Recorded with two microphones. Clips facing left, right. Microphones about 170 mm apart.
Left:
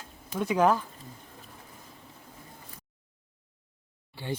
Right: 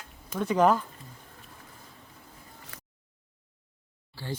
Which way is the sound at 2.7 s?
85° right.